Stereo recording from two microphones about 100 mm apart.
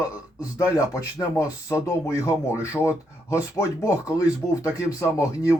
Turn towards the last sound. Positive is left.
turn(degrees=35)  # may be behind; listen again after turning